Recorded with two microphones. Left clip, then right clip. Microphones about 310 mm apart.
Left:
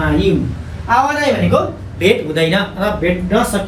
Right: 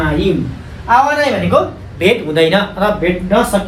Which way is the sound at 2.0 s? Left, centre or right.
Centre.